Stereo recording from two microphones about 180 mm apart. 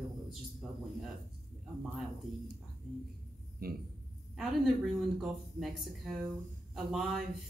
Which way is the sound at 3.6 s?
60° right (ahead or behind).